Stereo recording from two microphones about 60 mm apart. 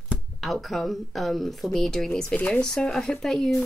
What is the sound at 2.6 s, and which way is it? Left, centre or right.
Speech, centre.